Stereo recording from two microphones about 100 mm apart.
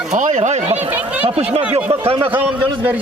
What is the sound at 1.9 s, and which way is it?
Speech, 85° right.